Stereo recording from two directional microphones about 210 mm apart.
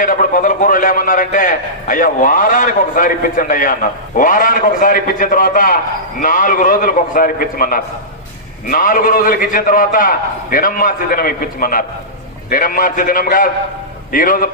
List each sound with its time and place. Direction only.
0.0 s a man's voice: 40° left (ahead or behind)